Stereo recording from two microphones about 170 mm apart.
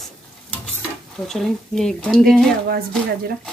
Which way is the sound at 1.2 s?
Centre (ahead or behind).